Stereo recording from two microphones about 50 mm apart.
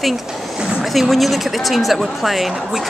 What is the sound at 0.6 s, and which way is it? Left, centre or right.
Speech, centre.